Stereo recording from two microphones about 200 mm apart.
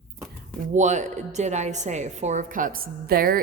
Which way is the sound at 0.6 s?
35° right (ahead or behind).